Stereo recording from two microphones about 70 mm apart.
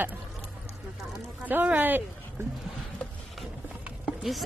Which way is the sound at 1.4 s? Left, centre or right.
Right.